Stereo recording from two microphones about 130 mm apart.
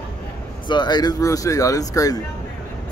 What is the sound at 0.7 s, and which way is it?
Speech, 35° left (ahead or behind).